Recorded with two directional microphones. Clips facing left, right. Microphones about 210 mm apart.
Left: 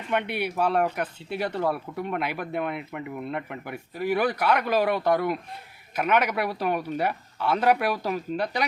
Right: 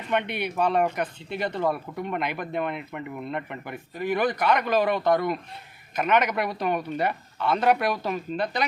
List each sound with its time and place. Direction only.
0.1 s speech: 5° left (ahead or behind)